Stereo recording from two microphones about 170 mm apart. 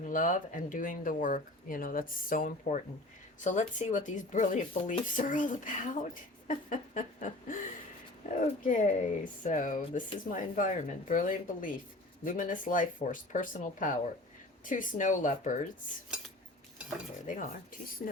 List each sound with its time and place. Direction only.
0.0 s speech: 50° left (ahead or behind)
6.5 s a sound: 50° left (ahead or behind)
8.3 s speech: 45° left (ahead or behind)
17.2 s speech: 50° left (ahead or behind)